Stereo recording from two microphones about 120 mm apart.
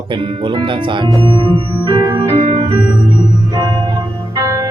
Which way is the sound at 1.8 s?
35° right (ahead or behind).